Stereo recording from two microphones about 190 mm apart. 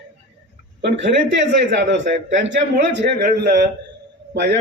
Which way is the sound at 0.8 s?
65° right (ahead or behind).